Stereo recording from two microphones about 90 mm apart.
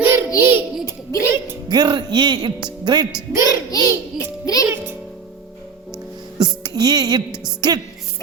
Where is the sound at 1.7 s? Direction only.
55° right (ahead or behind).